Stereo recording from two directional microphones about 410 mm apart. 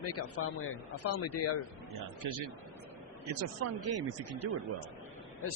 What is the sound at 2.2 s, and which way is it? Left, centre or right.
A man's voice, right.